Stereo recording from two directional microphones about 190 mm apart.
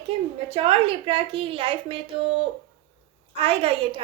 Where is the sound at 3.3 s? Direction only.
30° right (ahead or behind).